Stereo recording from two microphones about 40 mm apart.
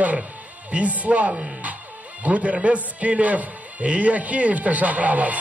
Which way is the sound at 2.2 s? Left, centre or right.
Right.